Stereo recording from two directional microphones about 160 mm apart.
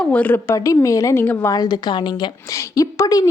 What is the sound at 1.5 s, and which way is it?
Speech, 25° left (ahead or behind).